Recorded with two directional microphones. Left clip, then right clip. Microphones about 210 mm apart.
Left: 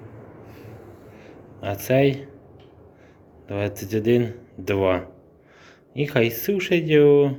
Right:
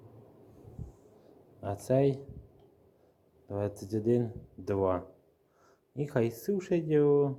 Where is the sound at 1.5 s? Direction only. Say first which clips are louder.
Left 8 dB; 30° right (ahead or behind).